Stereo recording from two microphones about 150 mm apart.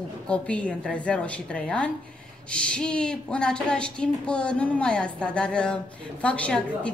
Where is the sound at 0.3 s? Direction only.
10° left (ahead or behind).